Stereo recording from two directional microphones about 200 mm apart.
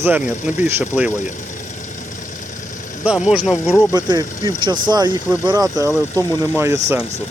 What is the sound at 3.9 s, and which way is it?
Speech, 20° right (ahead or behind).